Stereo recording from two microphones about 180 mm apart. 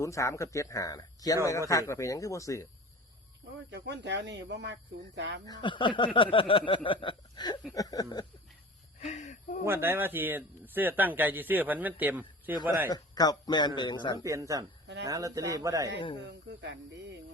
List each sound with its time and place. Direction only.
0.0 s speech: 15° left (ahead or behind)
3.7 s speech: 70° right (ahead or behind)
5.5 s a man's voice: 25° left (ahead or behind)
9.0 s wheeze: 40° left (ahead or behind)
9.6 s speech: 15° right (ahead or behind)
12.9 s a man's voice: 20° left (ahead or behind)
14.3 s a man's voice: 15° right (ahead or behind)
16.6 s speech: 85° right